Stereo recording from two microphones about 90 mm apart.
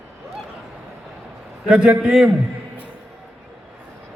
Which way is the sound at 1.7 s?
10° right (ahead or behind).